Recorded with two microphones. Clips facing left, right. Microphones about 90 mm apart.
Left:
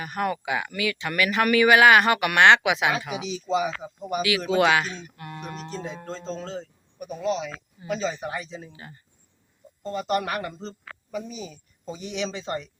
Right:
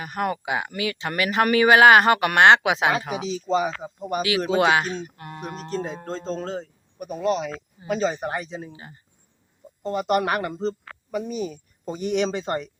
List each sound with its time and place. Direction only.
0.0 s speech: 30° right (ahead or behind); by 8.7 s 55° right (ahead or behind)
8.7 s speech: 25° right (ahead or behind)
10.1 s speech: 65° right (ahead or behind)